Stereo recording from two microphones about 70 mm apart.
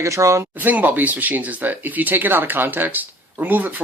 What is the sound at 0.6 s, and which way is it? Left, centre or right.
Speech, right.